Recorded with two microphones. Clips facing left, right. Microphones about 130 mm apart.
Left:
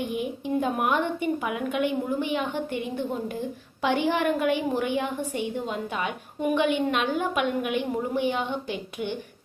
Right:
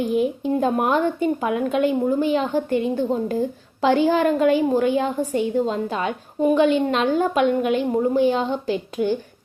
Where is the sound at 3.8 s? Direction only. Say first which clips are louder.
Right 7 dB; 30° right (ahead or behind).